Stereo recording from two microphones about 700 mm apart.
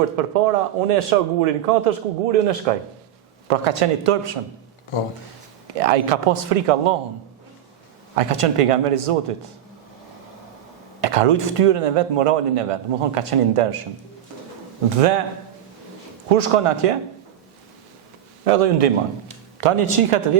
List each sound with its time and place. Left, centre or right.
0.3 s a man's voice: right
4.9 s speech: left
5.7 s speech: right
8.1 s speech: right
11.0 s speech: right
14.8 s speech: right
16.3 s speech: right
18.4 s a man's voice: right
19.5 s speech: right